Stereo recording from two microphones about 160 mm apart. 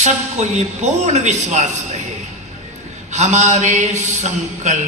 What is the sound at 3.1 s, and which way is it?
A man's voice, 45° right (ahead or behind).